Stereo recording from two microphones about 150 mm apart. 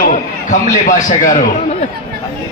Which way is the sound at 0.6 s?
60° left (ahead or behind).